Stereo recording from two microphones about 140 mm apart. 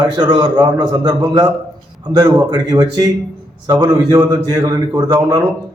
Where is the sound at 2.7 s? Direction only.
25° right (ahead or behind).